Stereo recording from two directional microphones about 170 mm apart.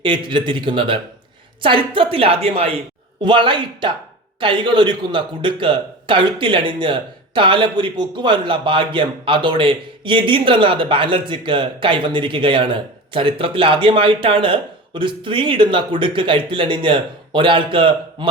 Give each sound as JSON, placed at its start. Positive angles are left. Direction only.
{"t": 0.0, "sound": "a man's voice", "side_deg": -30}